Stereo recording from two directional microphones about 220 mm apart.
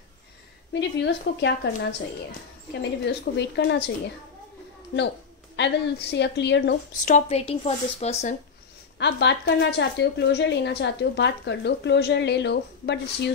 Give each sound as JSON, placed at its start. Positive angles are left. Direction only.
{"t": 0.7, "sound": "a woman's voice", "side_deg": 50}
{"t": 3.1, "sound": "a woman's voice", "side_deg": 50}
{"t": 5.6, "sound": "a woman's voice", "side_deg": 50}
{"t": 7.1, "sound": "a woman's voice", "side_deg": 30}
{"t": 8.9, "sound": "a woman's voice", "side_deg": 50}